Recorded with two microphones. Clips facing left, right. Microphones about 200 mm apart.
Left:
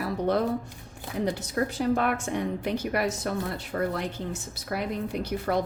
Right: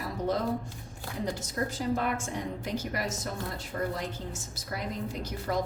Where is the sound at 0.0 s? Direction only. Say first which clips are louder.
Left 5 dB; 65° left (ahead or behind).